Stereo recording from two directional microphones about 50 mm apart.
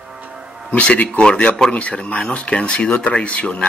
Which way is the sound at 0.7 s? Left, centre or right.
Left.